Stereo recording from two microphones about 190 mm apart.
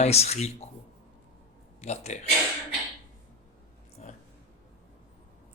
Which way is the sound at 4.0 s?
35° left (ahead or behind).